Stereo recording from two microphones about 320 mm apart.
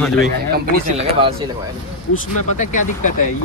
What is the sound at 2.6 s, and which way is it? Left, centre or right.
Speech, left.